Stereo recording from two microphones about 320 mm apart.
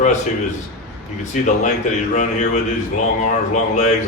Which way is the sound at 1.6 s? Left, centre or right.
Left.